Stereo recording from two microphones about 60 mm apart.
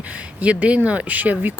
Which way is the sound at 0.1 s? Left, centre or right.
Right.